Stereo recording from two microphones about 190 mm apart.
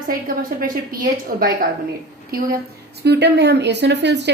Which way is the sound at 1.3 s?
45° right (ahead or behind).